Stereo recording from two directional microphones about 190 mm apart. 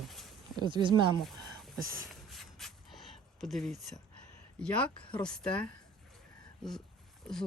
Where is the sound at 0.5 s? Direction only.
25° right (ahead or behind).